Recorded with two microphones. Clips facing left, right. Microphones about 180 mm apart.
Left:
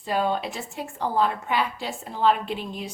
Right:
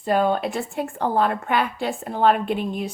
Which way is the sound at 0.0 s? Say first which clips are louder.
Right 5 dB; 50° right (ahead or behind).